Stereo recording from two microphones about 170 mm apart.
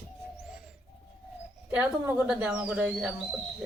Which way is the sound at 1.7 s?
10° right (ahead or behind).